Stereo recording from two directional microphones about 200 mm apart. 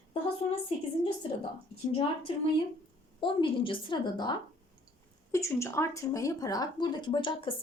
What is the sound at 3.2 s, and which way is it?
Speech, 25° left (ahead or behind).